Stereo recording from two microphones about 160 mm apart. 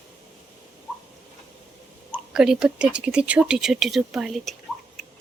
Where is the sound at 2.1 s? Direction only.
5° right (ahead or behind).